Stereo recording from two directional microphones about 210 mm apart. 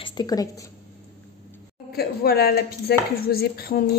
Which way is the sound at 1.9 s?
45° left (ahead or behind).